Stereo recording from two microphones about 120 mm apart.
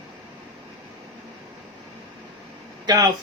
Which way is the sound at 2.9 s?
35° right (ahead or behind).